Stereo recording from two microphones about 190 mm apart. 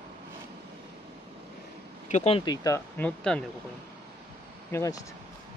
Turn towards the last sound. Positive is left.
turn(degrees=15)  # may be behind; listen again after turning